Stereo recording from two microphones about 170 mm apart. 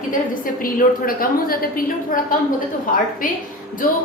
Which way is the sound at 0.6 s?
55° left (ahead or behind).